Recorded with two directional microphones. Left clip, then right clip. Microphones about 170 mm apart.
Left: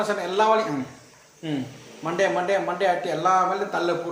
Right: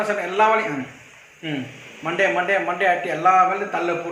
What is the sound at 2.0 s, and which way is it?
A man's voice, 5° left (ahead or behind).